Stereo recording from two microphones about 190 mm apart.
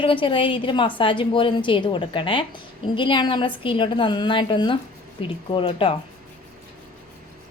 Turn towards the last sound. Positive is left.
turn(degrees=25)  # may be behind; listen again after turning